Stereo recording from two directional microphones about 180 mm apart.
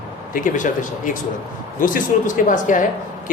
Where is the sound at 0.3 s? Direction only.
45° left (ahead or behind).